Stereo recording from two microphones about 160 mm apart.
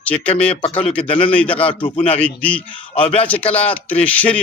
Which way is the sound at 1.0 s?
35° left (ahead or behind).